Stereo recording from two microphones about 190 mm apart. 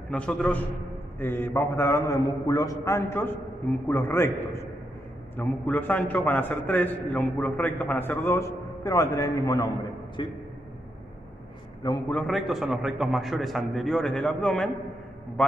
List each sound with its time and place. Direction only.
0.1 s a man's voice: 5° left (ahead or behind); by 10.3 s 25° left (ahead or behind)
12.1 s a man's voice: centre (ahead or behind)